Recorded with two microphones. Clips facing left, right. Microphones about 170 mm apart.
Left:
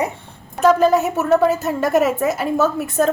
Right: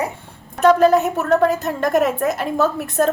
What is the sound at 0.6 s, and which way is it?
A woman's voice, centre (ahead or behind).